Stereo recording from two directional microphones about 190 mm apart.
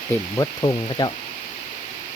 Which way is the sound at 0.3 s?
20° left (ahead or behind).